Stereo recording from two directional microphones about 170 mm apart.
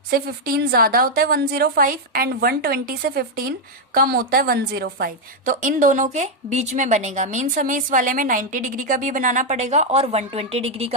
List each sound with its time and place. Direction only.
0.1 s a woman's voice: 65° right (ahead or behind); by 10.9 s 40° right (ahead or behind)